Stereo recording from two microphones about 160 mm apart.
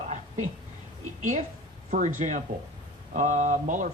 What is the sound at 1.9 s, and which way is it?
Speech, 50° right (ahead or behind).